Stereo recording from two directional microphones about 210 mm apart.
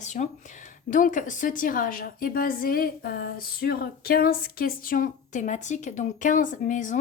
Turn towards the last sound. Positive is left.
turn(degrees=35)  # may be behind; listen again after turning